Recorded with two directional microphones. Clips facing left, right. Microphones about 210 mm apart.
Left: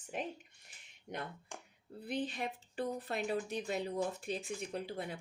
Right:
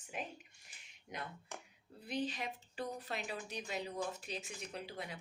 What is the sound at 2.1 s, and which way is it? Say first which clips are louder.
A woman's voice: left 2 dB; 55° left (ahead or behind).